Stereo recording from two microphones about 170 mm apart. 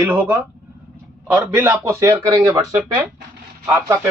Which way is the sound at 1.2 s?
15° right (ahead or behind).